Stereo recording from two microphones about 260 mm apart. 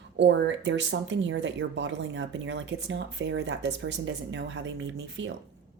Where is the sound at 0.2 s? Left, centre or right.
Right.